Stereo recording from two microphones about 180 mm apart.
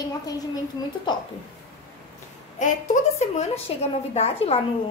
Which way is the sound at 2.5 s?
45° left (ahead or behind).